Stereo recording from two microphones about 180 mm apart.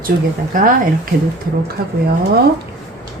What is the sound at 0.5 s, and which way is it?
Speech, 50° right (ahead or behind).